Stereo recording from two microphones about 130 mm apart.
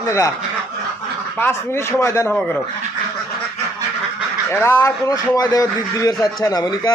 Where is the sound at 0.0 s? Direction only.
25° left (ahead or behind).